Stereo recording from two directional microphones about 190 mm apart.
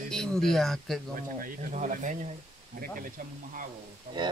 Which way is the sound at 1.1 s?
45° right (ahead or behind).